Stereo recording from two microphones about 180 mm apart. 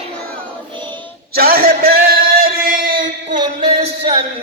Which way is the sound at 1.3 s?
55° right (ahead or behind).